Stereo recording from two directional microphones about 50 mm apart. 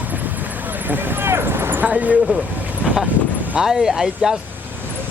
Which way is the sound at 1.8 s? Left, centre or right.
Right.